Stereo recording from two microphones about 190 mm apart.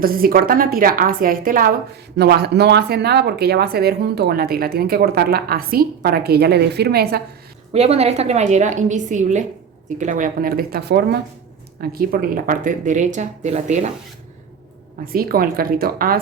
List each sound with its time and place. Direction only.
0.0 s a woman's voice: 50° right (ahead or behind)
2.1 s speech: 55° right (ahead or behind)
7.7 s a woman's voice: 35° right (ahead or behind)
15.0 s a woman's voice: 50° right (ahead or behind)